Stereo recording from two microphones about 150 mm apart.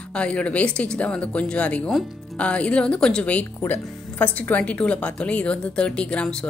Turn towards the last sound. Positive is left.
turn(degrees=5)  # may be behind; listen again after turning